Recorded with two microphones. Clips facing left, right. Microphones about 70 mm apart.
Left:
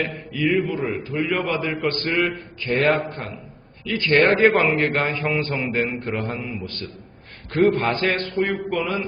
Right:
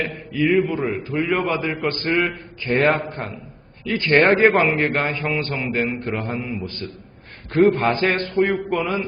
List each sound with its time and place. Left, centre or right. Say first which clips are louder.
0.3 s a man's voice: right 3 dB; centre
4.4 s a man's voice: right 1 dB; centre
7.5 s a man's voice: right 2 dB; centre
7.9 s a man's voice: right 2 dB; centre